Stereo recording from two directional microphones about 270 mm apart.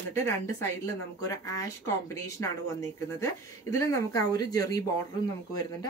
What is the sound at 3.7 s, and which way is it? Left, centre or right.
Speech, centre.